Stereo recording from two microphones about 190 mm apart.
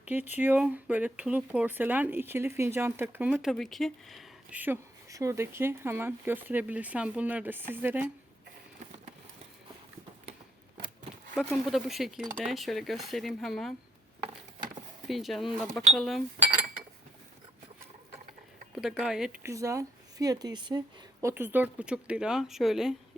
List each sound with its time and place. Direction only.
0.0 s speech: 10° right (ahead or behind)
10.8 s a sound: 45° right (ahead or behind)
11.5 s speech: centre (ahead or behind)
15.0 s speech: centre (ahead or behind)
18.7 s speech: centre (ahead or behind)